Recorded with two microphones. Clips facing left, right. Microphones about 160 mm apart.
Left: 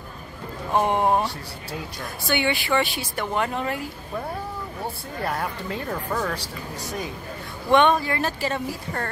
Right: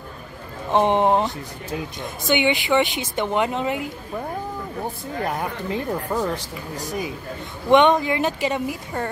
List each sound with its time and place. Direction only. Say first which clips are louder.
0.7 s speech: right 3 dB; 20° right (ahead or behind)
5.2 s speech: right 1 dB; 20° right (ahead or behind)